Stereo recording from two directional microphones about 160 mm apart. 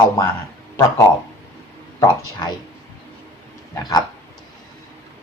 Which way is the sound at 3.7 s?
20° left (ahead or behind).